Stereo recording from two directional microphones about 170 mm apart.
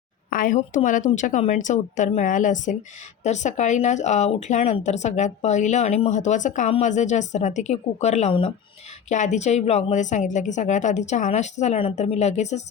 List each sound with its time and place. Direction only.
0.3 s speech: 55° left (ahead or behind)